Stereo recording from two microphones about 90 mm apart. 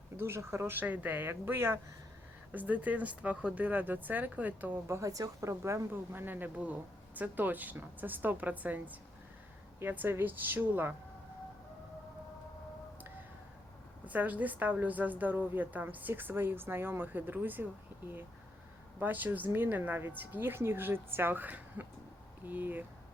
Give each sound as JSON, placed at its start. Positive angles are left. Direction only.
{"t": 0.2, "sound": "a woman's voice", "side_deg": -30}
{"t": 14.0, "sound": "a woman's voice", "side_deg": -20}